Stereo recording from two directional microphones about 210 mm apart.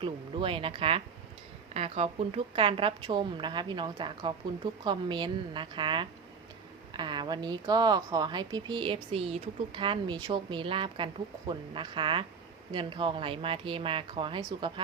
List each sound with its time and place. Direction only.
0.0 s speech: 25° right (ahead or behind)